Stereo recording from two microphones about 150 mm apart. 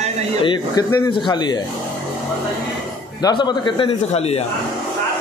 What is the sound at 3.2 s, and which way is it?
Speech, 30° left (ahead or behind).